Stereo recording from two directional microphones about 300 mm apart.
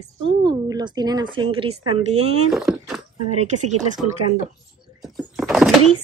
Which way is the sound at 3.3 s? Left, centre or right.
Right.